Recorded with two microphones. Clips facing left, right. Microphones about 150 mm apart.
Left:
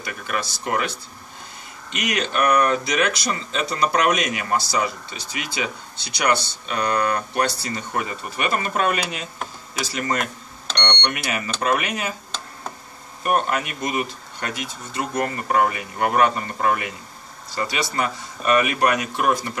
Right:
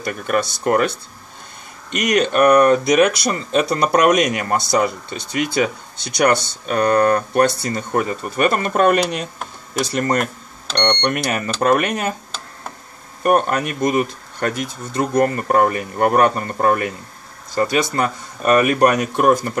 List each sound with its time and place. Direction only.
0.0 s speech: 45° right (ahead or behind)
1.9 s speech: 45° right (ahead or behind)
9.2 s speech: 5° left (ahead or behind)
9.9 s speech: 45° right (ahead or behind)
13.2 s speech: 45° right (ahead or behind)